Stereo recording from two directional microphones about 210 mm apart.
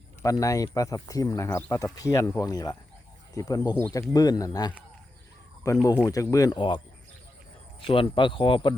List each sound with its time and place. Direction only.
0.2 s speech: 15° left (ahead or behind)